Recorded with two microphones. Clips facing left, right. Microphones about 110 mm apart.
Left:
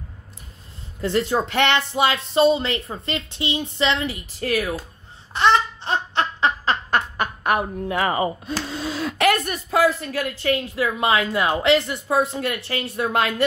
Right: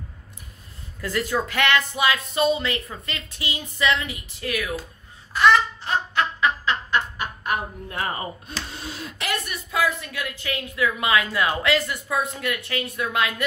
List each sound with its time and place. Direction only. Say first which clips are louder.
1.0 s speech: left 4 dB; 25° left (ahead or behind)
5.3 s laughter: even; 25° left (ahead or behind)
7.2 s speech: left 5 dB; 70° left (ahead or behind); by 8.5 s 90° left
9.3 s a woman's voice: left 7 dB; 45° left (ahead or behind)